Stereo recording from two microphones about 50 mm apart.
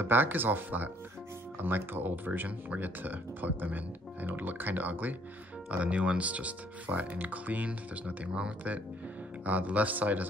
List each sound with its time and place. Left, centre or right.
0.0 s speech: right
5.7 s speech: right